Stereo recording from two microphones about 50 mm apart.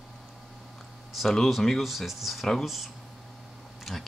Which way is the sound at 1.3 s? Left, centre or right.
Centre.